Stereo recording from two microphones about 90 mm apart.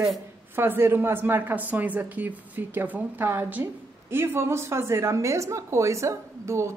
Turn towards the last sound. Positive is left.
turn(degrees=-30)  # may be behind; listen again after turning